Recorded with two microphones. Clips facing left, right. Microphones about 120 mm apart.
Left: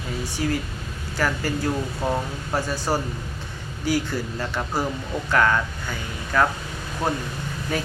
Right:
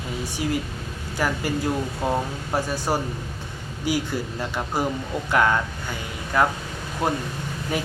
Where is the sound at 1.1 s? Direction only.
15° right (ahead or behind).